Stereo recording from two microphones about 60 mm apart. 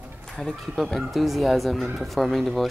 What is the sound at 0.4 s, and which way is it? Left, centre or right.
Speech, centre.